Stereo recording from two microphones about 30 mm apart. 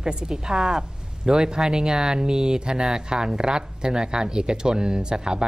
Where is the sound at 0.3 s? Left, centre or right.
Centre.